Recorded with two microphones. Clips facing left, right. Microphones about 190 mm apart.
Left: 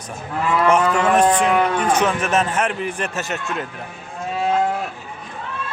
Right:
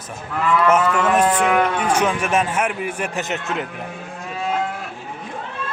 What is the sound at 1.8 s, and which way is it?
A man's voice, 10° right (ahead or behind).